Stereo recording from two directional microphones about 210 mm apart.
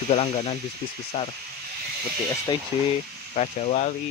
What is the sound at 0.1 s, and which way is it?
Speech, 25° left (ahead or behind).